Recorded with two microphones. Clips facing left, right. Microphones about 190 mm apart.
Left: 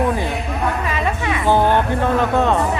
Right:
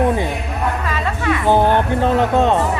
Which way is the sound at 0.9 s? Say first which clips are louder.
Right 1 dB; 15° left (ahead or behind).